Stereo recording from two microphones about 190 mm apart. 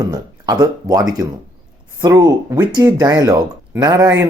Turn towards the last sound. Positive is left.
turn(degrees=-15)  # may be behind; listen again after turning